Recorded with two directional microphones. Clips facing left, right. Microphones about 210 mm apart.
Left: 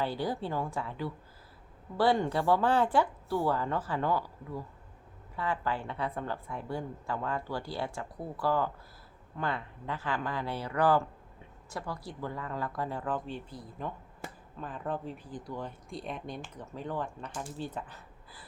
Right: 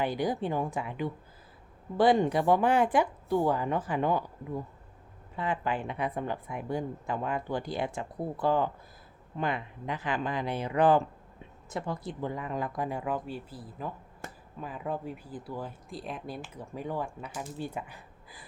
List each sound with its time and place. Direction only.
0.0 s speech: 15° right (ahead or behind)